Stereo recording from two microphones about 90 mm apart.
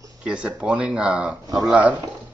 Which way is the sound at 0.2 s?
10° right (ahead or behind).